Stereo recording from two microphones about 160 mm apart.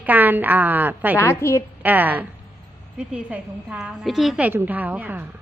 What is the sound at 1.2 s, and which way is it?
Speech, 15° left (ahead or behind).